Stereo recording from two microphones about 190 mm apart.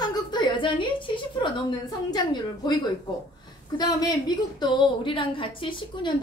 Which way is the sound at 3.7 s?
20° left (ahead or behind).